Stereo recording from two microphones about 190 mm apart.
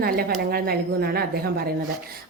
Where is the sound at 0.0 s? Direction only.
55° right (ahead or behind).